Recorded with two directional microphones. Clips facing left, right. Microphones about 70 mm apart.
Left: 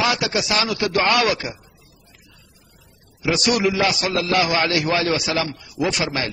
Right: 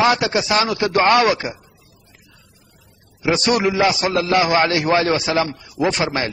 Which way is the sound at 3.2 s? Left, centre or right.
Right.